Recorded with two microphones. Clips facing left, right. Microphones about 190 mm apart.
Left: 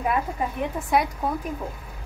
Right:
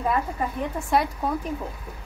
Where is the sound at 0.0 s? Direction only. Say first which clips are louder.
Even; 15° left (ahead or behind).